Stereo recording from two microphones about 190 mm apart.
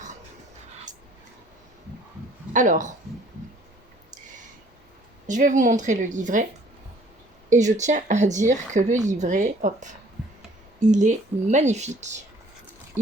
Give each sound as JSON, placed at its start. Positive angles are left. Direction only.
{"t": 2.5, "sound": "speech", "side_deg": -40}
{"t": 5.3, "sound": "speech", "side_deg": -40}
{"t": 7.5, "sound": "speech", "side_deg": -40}